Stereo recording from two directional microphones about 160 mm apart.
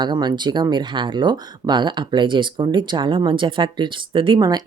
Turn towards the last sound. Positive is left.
turn(degrees=-25)  # may be behind; listen again after turning